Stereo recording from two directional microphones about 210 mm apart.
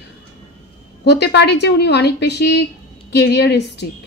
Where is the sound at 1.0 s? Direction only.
55° left (ahead or behind).